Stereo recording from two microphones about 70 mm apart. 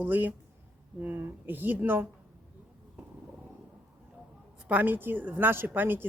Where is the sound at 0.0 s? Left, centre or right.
Right.